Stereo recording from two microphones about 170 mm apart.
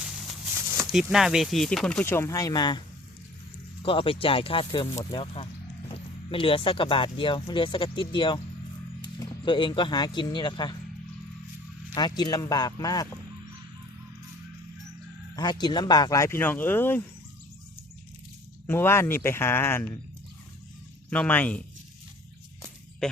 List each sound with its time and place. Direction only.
1.1 s speech: centre (ahead or behind); by 2.8 s 25° left (ahead or behind)
3.8 s speech: 30° left (ahead or behind)
11.9 s speech: 25° left (ahead or behind)
15.4 s speech: 25° left (ahead or behind)
18.6 s speech: 15° left (ahead or behind)
21.1 s speech: 10° left (ahead or behind)